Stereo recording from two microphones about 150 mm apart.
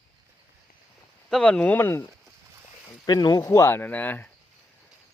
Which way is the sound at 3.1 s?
25° left (ahead or behind).